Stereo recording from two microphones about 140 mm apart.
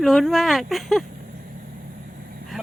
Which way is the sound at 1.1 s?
90° right.